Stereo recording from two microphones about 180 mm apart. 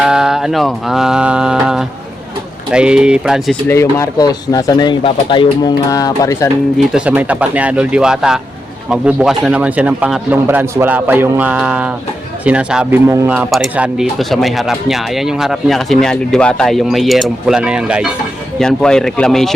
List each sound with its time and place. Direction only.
0.0 s speech: 5° right (ahead or behind)
3.7 s speech: 15° left (ahead or behind)
6.9 s a man's voice: 5° right (ahead or behind)